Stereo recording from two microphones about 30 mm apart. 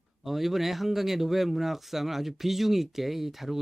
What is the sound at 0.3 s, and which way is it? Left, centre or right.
Speech, centre.